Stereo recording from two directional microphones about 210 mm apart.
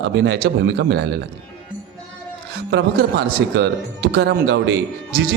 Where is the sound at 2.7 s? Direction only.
55° right (ahead or behind).